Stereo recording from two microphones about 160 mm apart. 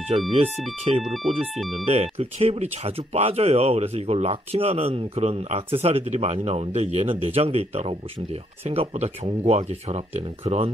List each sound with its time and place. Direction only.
0.3 s speech: 40° right (ahead or behind)